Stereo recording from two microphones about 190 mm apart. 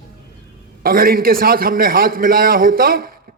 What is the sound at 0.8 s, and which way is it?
A man's voice, 50° right (ahead or behind).